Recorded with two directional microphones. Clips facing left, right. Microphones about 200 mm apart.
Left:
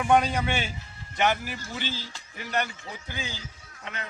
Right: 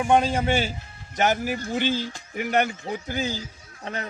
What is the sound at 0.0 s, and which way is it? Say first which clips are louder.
A man's voice: right 2 dB; 25° right (ahead or behind).